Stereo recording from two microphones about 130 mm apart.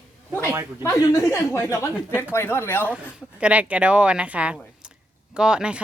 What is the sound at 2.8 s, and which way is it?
Speech, 10° right (ahead or behind).